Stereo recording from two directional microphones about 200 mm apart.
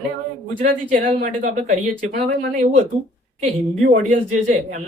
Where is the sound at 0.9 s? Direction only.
40° right (ahead or behind).